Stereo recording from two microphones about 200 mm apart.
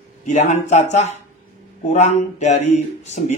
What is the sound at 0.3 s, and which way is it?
Speech, 35° left (ahead or behind).